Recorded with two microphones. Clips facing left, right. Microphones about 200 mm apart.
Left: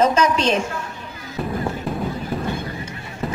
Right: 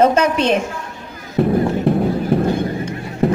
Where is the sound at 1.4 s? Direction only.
60° right (ahead or behind).